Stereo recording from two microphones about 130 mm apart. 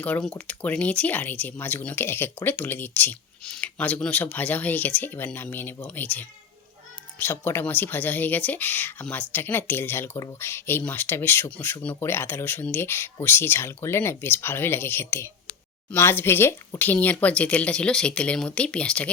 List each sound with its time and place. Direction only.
0.0 s speech: 10° left (ahead or behind)